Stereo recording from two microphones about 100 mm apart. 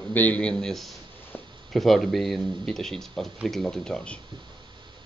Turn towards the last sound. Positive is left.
turn(degrees=10)  # may be behind; listen again after turning